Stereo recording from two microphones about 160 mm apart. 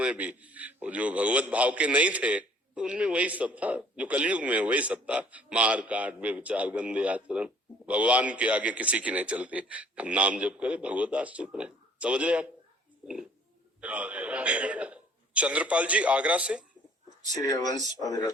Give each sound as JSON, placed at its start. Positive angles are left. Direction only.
{"t": 0.0, "sound": "a man's voice", "side_deg": -10}
{"t": 13.8, "sound": "a man's voice", "side_deg": -10}
{"t": 17.3, "sound": "speech", "side_deg": 25}